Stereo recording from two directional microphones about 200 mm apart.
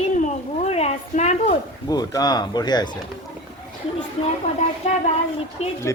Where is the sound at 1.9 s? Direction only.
20° left (ahead or behind).